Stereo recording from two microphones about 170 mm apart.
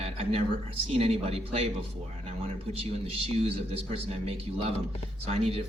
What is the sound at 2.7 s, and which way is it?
A man's voice, 35° right (ahead or behind).